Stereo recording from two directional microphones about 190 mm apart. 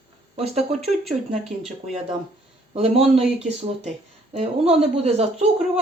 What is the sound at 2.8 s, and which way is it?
Speech, 30° right (ahead or behind).